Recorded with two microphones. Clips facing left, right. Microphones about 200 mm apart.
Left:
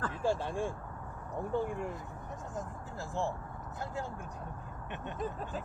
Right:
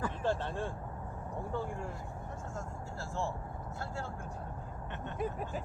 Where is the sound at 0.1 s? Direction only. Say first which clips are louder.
Left 1 dB; 10° left (ahead or behind).